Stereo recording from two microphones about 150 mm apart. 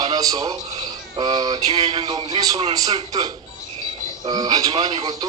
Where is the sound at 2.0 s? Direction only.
35° right (ahead or behind).